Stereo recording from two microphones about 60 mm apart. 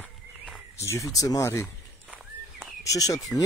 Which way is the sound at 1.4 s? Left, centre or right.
Left.